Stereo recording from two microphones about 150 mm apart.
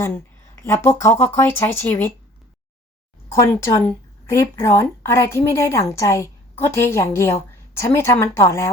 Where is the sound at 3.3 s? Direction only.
15° left (ahead or behind).